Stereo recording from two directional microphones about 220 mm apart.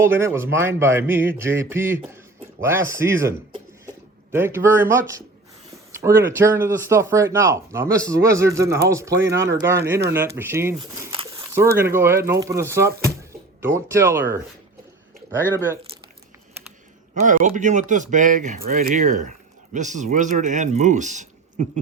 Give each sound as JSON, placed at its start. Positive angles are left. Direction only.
{"t": 0.0, "sound": "speech", "side_deg": -10}
{"t": 10.8, "sound": "a sound", "side_deg": -25}
{"t": 11.8, "sound": "speech", "side_deg": -10}
{"t": 17.2, "sound": "speech", "side_deg": -35}